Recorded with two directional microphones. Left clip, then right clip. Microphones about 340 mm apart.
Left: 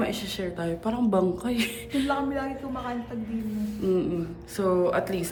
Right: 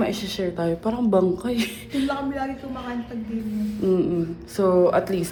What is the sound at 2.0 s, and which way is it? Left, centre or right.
Speech, centre.